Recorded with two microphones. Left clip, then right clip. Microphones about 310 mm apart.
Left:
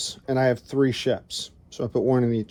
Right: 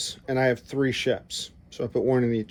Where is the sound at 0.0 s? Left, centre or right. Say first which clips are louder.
Left 2 dB; centre.